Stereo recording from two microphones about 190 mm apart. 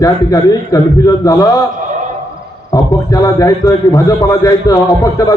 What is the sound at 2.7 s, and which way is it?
A man's voice, 20° left (ahead or behind).